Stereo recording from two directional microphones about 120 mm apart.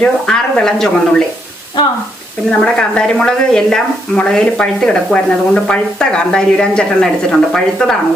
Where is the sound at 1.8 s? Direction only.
40° left (ahead or behind).